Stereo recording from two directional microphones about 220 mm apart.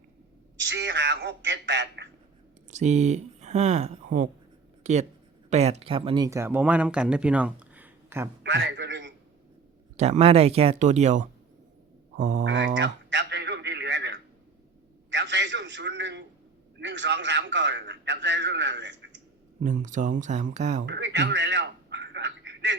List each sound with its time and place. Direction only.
0.6 s speech: 55° right (ahead or behind)
2.6 s speech: 30° right (ahead or behind); by 8.3 s 10° right (ahead or behind)
8.4 s a sound: 50° right (ahead or behind)
10.0 s speech: 30° right (ahead or behind)
12.5 s radio: 55° right (ahead or behind)
15.1 s a sound: 55° right (ahead or behind)
19.8 s speech: 35° right (ahead or behind)
20.8 s telephone: 50° right (ahead or behind)